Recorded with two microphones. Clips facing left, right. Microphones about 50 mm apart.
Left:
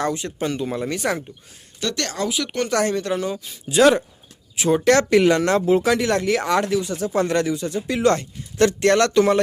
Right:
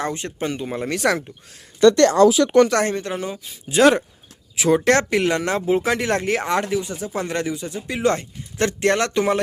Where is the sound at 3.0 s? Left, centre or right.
Right.